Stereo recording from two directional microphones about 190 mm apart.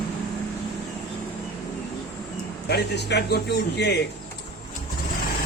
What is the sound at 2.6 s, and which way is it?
A man's voice, 60° left (ahead or behind).